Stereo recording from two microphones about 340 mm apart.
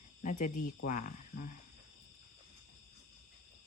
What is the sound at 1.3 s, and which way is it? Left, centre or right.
Speech, left.